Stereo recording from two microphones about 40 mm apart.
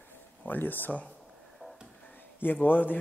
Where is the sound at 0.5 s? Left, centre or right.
Left.